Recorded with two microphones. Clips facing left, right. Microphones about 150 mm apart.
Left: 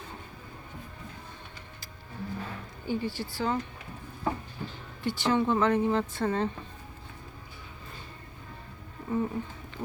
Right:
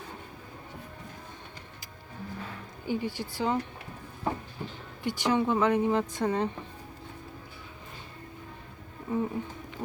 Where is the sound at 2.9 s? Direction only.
15° right (ahead or behind).